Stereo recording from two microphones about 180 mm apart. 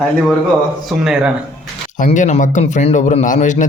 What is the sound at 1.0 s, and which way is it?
Speech, 5° right (ahead or behind).